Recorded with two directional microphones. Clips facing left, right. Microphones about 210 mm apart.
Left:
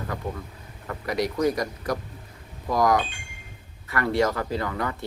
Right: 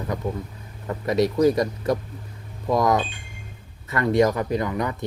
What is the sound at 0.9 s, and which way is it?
Speech, 25° right (ahead or behind).